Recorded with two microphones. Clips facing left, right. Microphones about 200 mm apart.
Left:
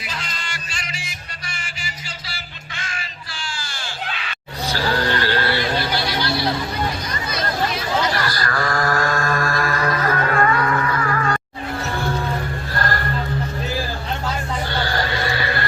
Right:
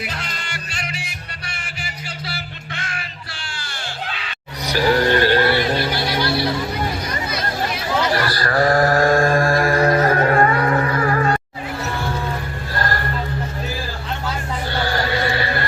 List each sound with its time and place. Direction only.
0.0 s music: 60° right (ahead or behind)
4.6 s music: 20° right (ahead or behind)
8.1 s mantra: 30° right (ahead or behind)